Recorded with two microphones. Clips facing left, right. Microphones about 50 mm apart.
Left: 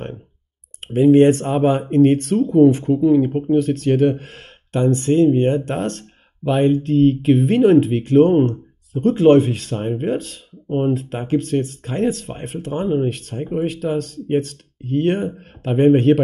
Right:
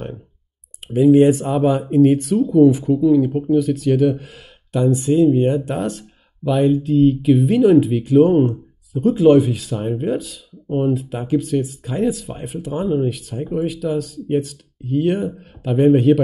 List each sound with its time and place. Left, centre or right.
0.7 s speech: left
3.5 s speech: left
6.4 s speech: left
6.7 s speech: left